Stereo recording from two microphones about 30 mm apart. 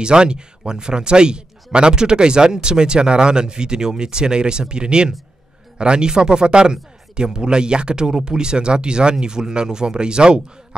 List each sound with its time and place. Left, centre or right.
0.0 s speech: right